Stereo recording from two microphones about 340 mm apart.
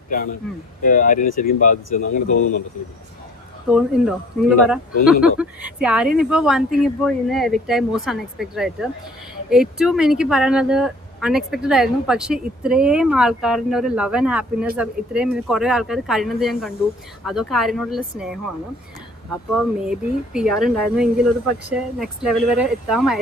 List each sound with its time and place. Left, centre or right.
0.8 s speech: left
3.7 s speech: centre